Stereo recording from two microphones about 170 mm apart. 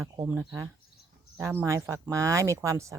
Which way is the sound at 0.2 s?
10° right (ahead or behind).